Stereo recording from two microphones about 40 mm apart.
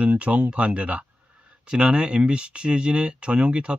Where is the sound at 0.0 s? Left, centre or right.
Right.